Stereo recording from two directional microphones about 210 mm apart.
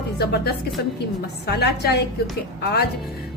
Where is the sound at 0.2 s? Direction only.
50° left (ahead or behind).